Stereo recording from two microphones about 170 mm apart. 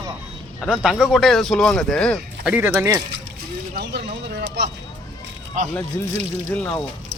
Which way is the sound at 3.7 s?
70° right (ahead or behind).